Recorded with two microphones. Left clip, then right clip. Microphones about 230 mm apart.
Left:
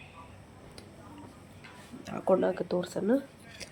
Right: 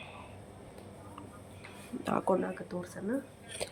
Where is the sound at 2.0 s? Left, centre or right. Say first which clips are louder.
Right 4 dB; centre.